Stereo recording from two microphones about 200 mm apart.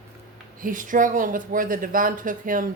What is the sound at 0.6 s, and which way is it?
Speech, 40° right (ahead or behind).